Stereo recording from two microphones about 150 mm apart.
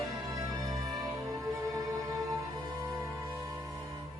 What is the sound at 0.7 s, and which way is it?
Music, 25° right (ahead or behind).